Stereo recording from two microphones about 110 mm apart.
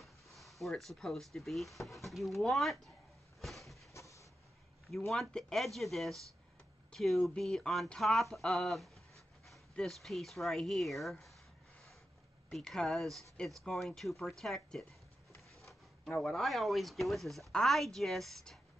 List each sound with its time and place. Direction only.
0.0 s speech: centre (ahead or behind)
3.3 s a sound: centre (ahead or behind)
3.9 s vehicle: 30° left (ahead or behind)
4.9 s speech: centre (ahead or behind)
12.4 s speech: 5° left (ahead or behind)
16.2 s speech: centre (ahead or behind)